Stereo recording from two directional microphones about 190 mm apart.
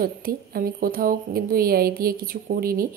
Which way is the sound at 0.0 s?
50° right (ahead or behind).